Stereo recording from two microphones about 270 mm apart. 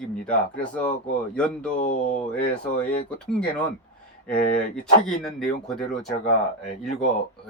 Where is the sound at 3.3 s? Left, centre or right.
Centre.